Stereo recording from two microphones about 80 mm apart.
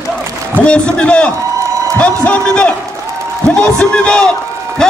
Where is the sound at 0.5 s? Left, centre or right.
Centre.